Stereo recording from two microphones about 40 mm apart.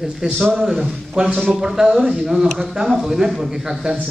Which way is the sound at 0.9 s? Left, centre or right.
Right.